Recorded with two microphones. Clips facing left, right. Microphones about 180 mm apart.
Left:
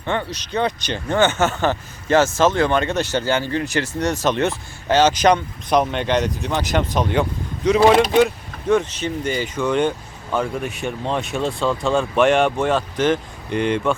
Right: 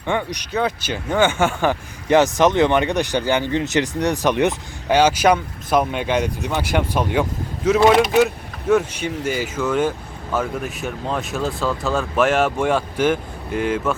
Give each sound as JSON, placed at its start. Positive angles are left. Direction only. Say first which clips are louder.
{"t": 0.0, "sound": "speech", "louder": "right 1 dB", "side_deg": -10}